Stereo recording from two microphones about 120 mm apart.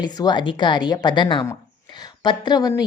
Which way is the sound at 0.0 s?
35° left (ahead or behind).